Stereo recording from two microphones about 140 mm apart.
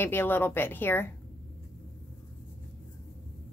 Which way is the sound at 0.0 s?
15° left (ahead or behind).